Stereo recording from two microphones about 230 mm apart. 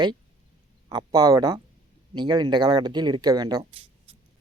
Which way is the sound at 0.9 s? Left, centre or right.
Centre.